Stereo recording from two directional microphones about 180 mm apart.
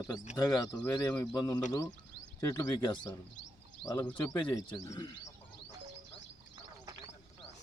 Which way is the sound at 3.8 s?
Centre (ahead or behind).